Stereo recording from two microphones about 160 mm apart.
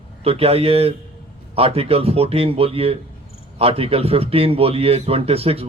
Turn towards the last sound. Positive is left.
turn(degrees=-40)  # may be behind; listen again after turning